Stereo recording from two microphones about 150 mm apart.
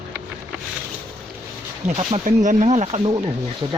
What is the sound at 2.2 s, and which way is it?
Speech, 55° right (ahead or behind).